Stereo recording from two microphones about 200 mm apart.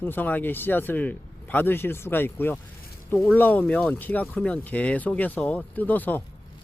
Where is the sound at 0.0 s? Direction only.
10° left (ahead or behind).